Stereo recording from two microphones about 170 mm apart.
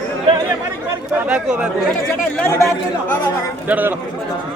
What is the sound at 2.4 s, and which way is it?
Speech, 15° left (ahead or behind).